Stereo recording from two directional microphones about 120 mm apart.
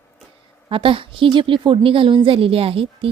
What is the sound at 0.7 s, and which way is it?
A woman's voice, 45° right (ahead or behind).